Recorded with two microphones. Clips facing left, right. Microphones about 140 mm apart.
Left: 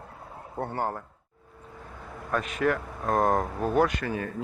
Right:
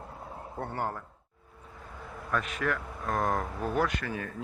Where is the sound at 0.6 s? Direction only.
30° left (ahead or behind).